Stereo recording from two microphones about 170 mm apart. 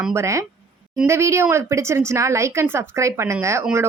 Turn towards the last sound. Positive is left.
turn(degrees=-15)  # may be behind; listen again after turning